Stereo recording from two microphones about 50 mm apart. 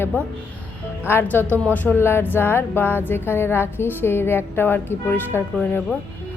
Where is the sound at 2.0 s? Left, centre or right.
Left.